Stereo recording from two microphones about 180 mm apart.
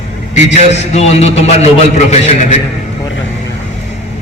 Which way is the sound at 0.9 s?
35° left (ahead or behind).